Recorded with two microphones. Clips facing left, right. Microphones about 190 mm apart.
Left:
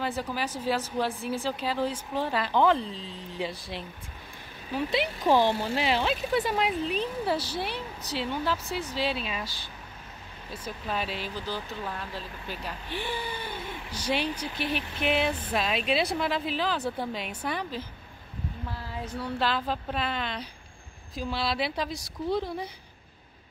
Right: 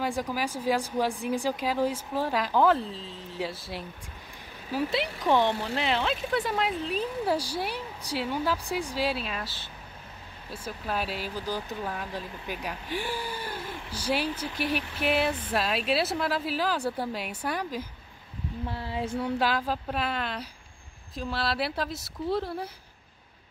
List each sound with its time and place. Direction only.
0.0 s speech: 10° right (ahead or behind)
5.3 s speech: 5° left (ahead or behind)
10.5 s speech: 5° right (ahead or behind)
18.7 s speech: 25° right (ahead or behind)
19.3 s speech: 10° right (ahead or behind)